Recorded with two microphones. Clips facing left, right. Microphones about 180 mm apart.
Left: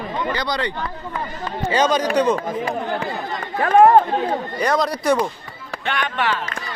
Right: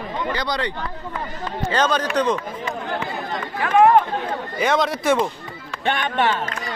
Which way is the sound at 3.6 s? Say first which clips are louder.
Left 2 dB; 35° left (ahead or behind).